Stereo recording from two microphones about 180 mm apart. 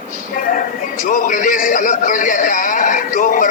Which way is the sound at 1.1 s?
45° left (ahead or behind).